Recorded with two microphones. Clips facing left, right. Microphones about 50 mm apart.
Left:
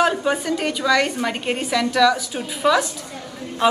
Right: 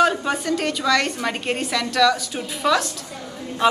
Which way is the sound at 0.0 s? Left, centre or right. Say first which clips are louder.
Even; centre.